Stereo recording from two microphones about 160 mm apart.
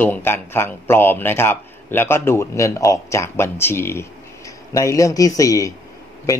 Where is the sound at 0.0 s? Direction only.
10° left (ahead or behind).